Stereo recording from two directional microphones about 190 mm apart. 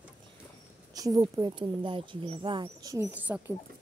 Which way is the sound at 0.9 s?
20° right (ahead or behind).